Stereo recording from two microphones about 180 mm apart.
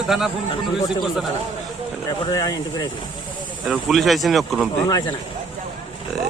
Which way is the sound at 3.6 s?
Centre (ahead or behind).